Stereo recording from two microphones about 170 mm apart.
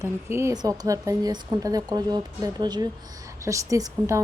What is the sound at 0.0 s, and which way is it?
Speech, 15° right (ahead or behind).